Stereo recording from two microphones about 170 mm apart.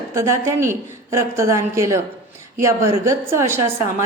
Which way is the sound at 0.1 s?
15° right (ahead or behind).